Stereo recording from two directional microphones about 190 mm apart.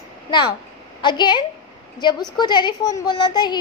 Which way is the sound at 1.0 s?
25° left (ahead or behind).